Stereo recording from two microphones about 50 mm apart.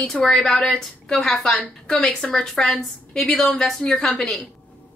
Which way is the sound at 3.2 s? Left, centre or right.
Centre.